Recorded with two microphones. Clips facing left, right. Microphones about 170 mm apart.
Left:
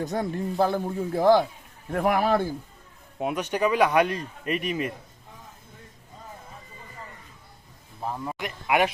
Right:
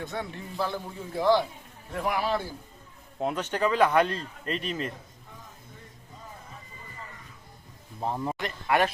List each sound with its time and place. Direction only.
0.0 s speech: 40° left (ahead or behind)
3.2 s speech: 15° left (ahead or behind)
8.0 s speech: 25° right (ahead or behind)
8.4 s speech: 15° left (ahead or behind)